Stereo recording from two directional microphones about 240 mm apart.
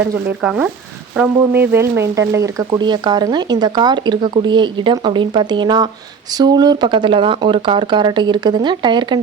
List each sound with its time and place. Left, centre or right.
0.0 s speech: centre